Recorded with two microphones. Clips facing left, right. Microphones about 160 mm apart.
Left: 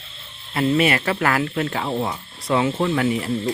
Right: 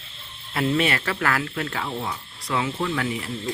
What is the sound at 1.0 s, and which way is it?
Speech, 25° left (ahead or behind).